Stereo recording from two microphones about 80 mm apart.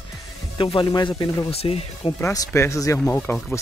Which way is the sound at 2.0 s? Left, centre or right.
Left.